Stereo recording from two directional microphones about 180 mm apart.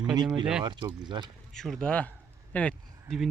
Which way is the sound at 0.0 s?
20° right (ahead or behind).